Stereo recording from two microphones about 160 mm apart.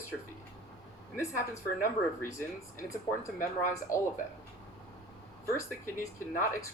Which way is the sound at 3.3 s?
55° left (ahead or behind).